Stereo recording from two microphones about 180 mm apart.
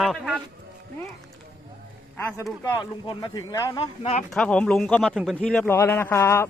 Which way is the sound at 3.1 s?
25° left (ahead or behind).